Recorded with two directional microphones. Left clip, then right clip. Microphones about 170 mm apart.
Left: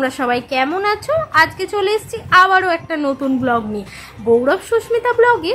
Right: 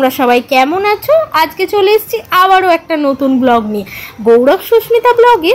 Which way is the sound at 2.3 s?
10° right (ahead or behind).